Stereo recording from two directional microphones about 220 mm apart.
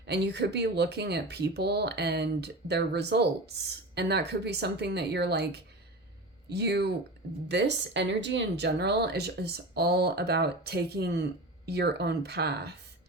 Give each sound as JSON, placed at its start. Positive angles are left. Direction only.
{"t": 0.0, "sound": "speech", "side_deg": -50}